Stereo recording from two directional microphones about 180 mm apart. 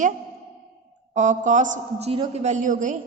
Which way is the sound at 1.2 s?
40° right (ahead or behind).